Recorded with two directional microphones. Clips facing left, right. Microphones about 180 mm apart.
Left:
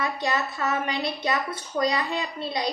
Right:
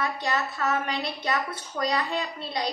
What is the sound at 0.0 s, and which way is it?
A woman's voice, 15° left (ahead or behind).